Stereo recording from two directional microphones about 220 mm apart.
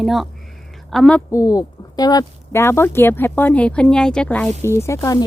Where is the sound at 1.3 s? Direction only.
15° left (ahead or behind).